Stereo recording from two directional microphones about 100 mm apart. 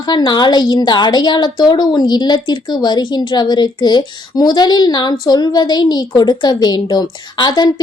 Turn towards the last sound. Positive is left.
turn(degrees=50)  # may be behind; listen again after turning